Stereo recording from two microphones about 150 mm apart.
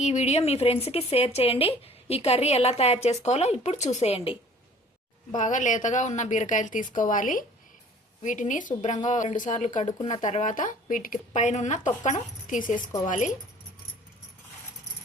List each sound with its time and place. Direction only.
0.0 s speech: 50° left (ahead or behind)
5.3 s a woman's voice: 55° left (ahead or behind)